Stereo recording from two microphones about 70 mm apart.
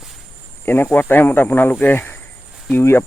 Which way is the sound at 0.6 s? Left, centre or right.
Left.